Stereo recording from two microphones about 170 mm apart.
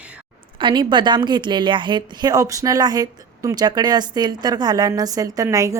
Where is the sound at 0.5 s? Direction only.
30° right (ahead or behind).